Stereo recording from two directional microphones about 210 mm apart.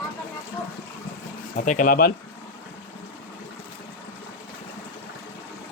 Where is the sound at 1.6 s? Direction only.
40° left (ahead or behind).